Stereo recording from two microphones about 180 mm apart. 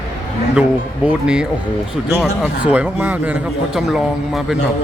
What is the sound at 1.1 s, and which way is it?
A man's voice, 5° right (ahead or behind).